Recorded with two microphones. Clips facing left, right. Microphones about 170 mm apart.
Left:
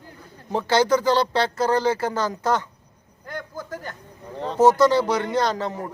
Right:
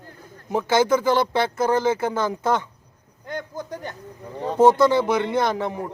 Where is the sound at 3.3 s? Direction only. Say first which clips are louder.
Right 2 dB; 20° right (ahead or behind).